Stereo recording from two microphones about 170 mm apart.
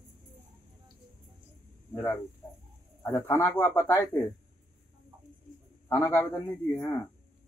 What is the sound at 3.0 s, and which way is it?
Speech, 15° left (ahead or behind).